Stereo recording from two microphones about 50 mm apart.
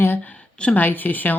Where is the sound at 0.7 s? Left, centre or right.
Left.